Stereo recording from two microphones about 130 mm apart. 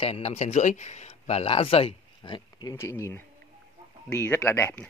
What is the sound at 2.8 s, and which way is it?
Speech, 20° left (ahead or behind).